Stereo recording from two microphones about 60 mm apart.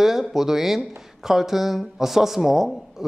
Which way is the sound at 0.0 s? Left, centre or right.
Centre.